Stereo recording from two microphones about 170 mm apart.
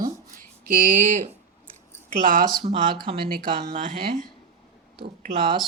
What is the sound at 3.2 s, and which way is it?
Speech, 55° right (ahead or behind).